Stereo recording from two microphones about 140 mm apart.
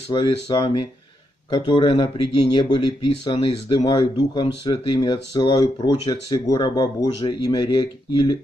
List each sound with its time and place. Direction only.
0.1 s speech: 35° left (ahead or behind)